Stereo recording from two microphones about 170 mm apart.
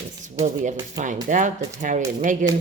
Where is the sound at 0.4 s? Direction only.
45° right (ahead or behind).